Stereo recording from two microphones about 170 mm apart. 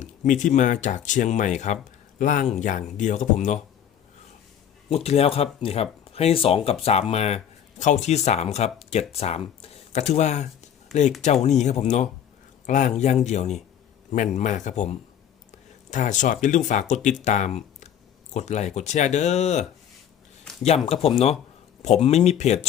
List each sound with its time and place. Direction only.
0.0 s speech: 50° left (ahead or behind)
4.9 s speech: 35° left (ahead or behind)
10.9 s speech: centre (ahead or behind)
11.4 s speech: 40° left (ahead or behind)
20.4 s a sound: centre (ahead or behind)
20.8 s speech: 35° left (ahead or behind)